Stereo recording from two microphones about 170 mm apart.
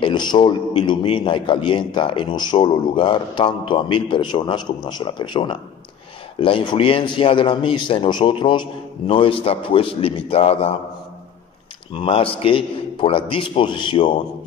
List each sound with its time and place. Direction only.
0.0 s a man's voice: 25° left (ahead or behind)
11.9 s speech: 30° left (ahead or behind)